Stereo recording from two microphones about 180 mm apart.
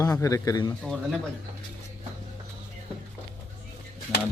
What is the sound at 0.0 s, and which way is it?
Speech, 20° left (ahead or behind).